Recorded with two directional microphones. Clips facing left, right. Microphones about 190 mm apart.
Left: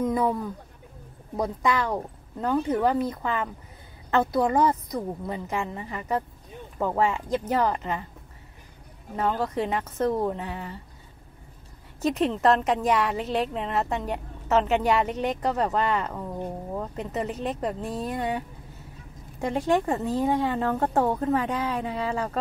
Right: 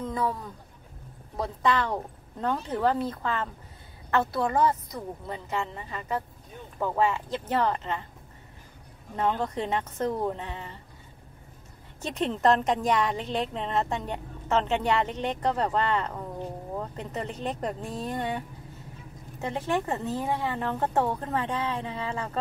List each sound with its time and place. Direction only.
0.0 s speech: 15° left (ahead or behind)
9.1 s speech: 5° left (ahead or behind)
12.2 s speech: 5° left (ahead or behind)
19.4 s speech: 15° left (ahead or behind)